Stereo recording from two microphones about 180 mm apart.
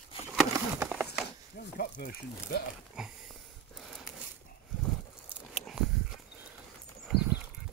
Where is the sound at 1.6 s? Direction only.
55° left (ahead or behind).